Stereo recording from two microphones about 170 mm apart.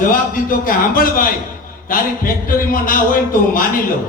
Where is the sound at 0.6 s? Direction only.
55° left (ahead or behind).